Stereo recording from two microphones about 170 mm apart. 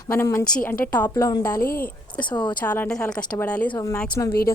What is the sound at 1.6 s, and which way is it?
Speech, 60° left (ahead or behind).